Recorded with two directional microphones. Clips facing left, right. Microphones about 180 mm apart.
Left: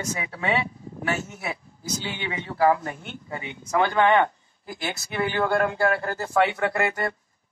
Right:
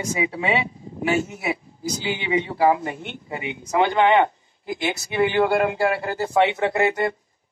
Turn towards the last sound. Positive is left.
turn(degrees=-20)  # may be behind; listen again after turning